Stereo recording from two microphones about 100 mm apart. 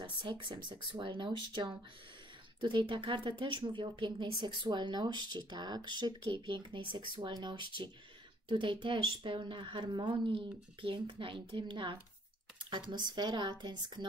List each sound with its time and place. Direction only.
0.0 s a woman's voice: 55° right (ahead or behind)
12.5 s a sound: 50° right (ahead or behind)
12.9 s speech: 45° right (ahead or behind)